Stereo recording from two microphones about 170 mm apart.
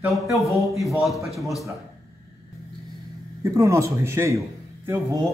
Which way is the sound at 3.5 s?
15° right (ahead or behind).